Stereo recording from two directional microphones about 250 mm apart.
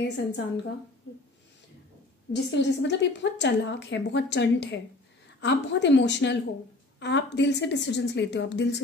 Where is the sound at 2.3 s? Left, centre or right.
Left.